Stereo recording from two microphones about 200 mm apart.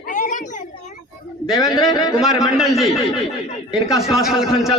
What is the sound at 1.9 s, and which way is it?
Speech, 20° left (ahead or behind).